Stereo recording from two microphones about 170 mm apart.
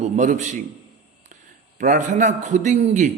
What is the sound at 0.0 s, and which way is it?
Speech, 45° right (ahead or behind).